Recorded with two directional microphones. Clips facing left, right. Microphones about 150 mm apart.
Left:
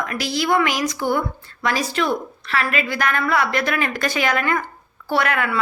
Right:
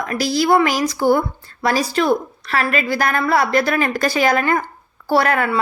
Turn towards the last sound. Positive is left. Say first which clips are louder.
# right 4 dB
turn(degrees=-35)  # may be behind; listen again after turning